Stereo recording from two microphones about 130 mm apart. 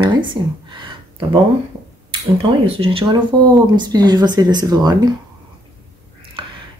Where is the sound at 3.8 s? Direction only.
30° right (ahead or behind).